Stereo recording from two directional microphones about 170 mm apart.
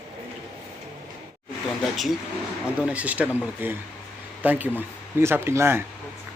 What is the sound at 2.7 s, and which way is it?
Speech, 10° right (ahead or behind).